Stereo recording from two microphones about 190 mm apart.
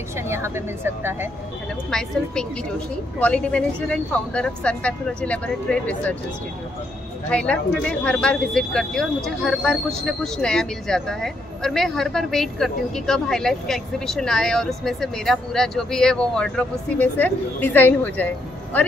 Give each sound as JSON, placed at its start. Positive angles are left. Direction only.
{"t": 0.3, "sound": "speech", "side_deg": -15}
{"t": 1.9, "sound": "speech", "side_deg": 5}
{"t": 7.2, "sound": "speech", "side_deg": 5}